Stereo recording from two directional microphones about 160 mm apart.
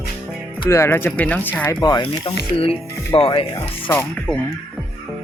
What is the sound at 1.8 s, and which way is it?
Speech, 25° left (ahead or behind).